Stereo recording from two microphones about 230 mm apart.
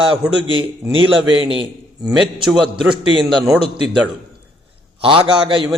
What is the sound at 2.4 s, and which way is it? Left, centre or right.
Speech, centre.